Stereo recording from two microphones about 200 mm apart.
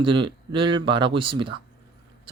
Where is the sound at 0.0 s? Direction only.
25° right (ahead or behind).